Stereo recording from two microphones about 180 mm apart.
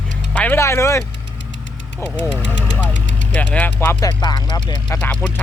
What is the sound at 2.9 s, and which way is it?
Vehicle, 85° left.